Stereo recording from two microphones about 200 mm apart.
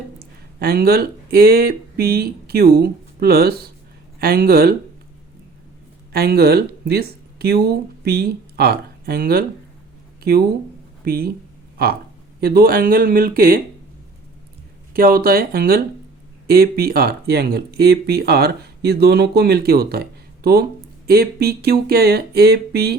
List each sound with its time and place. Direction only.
0.6 s speech: 50° right (ahead or behind)
6.1 s speech: 50° right (ahead or behind)
11.0 s speech: 50° right (ahead or behind)
14.9 s speech: 45° right (ahead or behind)